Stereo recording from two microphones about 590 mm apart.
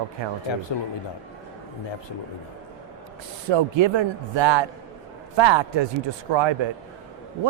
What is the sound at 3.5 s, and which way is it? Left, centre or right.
Speech, right.